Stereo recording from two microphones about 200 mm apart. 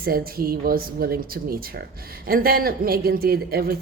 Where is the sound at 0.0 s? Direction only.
50° right (ahead or behind).